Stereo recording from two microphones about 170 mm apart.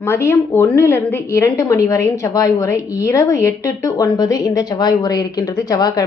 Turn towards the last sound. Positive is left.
turn(degrees=20)  # may be behind; listen again after turning